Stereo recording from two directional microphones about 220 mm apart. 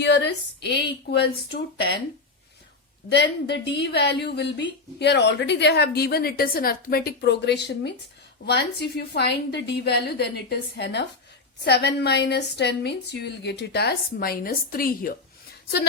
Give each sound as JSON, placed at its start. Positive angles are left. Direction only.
{"t": 0.0, "sound": "a woman's voice", "side_deg": 50}
{"t": 3.1, "sound": "a woman's voice", "side_deg": 50}